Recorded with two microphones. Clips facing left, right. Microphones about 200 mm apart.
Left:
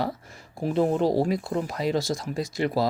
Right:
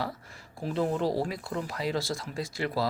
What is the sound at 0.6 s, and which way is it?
Speech, 20° left (ahead or behind).